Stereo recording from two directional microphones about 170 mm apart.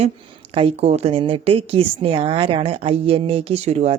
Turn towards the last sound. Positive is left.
turn(degrees=-40)  # may be behind; listen again after turning